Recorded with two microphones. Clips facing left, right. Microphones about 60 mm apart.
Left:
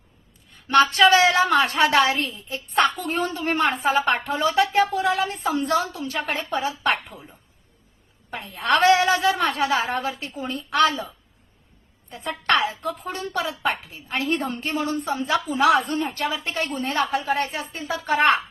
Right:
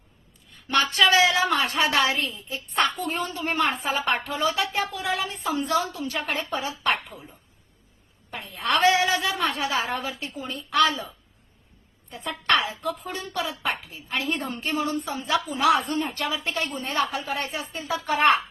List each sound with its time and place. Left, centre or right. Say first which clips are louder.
0.7 s a woman's voice: left 5 dB; left
8.3 s a woman's voice: left 4 dB; left
10.4 s a woman's voice: left 2 dB; left
12.1 s a woman's voice: left 2 dB; left